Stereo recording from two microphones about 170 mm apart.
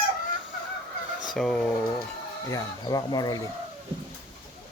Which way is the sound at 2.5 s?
20° left (ahead or behind).